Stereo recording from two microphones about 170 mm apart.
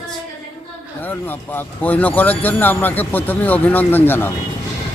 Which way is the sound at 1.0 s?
10° left (ahead or behind).